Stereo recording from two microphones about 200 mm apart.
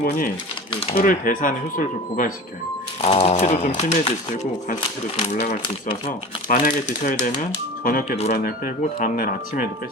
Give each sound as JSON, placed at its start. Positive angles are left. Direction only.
{"t": 0.9, "sound": "speech", "side_deg": 45}
{"t": 3.0, "sound": "speech", "side_deg": 30}
{"t": 5.5, "sound": "speech", "side_deg": 40}